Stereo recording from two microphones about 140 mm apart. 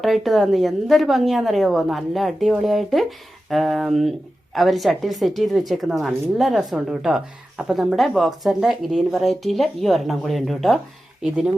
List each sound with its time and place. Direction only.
0.0 s a woman's voice: centre (ahead or behind)